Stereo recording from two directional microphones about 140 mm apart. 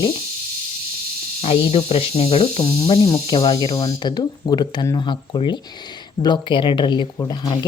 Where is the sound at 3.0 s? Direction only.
30° left (ahead or behind).